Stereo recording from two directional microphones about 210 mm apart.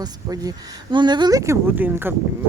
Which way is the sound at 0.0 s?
20° right (ahead or behind).